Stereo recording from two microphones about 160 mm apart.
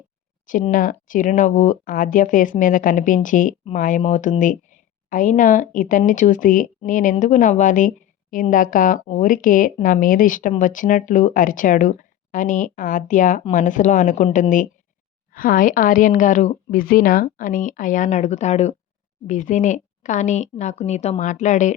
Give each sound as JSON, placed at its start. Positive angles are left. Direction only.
{"t": 0.7, "sound": "a woman's voice", "side_deg": 55}
{"t": 15.3, "sound": "speech", "side_deg": 60}
{"t": 16.8, "sound": "a woman's voice", "side_deg": 65}